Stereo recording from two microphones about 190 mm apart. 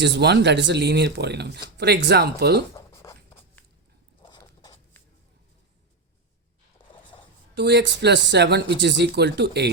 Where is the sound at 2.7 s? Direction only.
15° left (ahead or behind).